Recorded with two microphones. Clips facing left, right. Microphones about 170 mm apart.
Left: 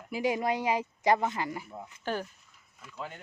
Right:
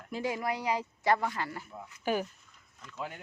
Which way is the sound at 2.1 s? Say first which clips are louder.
Right 3 dB; 10° right (ahead or behind).